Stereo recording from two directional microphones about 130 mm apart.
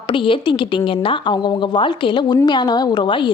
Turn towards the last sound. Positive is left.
turn(degrees=40)  # may be behind; listen again after turning